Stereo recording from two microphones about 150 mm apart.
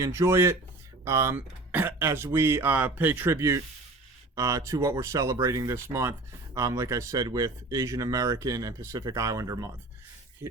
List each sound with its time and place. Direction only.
0.0 s speech: 20° right (ahead or behind)